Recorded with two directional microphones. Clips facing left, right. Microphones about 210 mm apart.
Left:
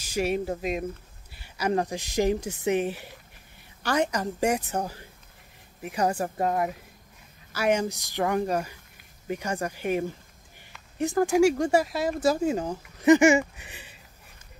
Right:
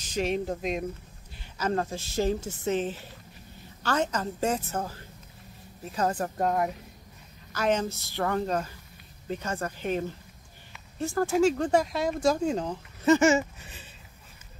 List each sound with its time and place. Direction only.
0.0 s speech: 10° left (ahead or behind)